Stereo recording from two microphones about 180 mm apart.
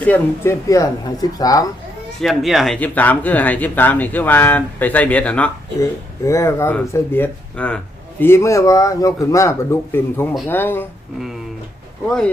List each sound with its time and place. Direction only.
0.0 s speech: 10° left (ahead or behind)
2.2 s speech: centre (ahead or behind)
12.0 s speech: 5° left (ahead or behind)